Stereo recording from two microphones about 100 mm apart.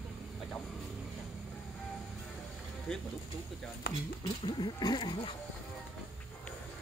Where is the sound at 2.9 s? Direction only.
5° left (ahead or behind).